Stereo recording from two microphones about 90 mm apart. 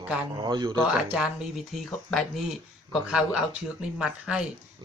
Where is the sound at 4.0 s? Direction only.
10° right (ahead or behind).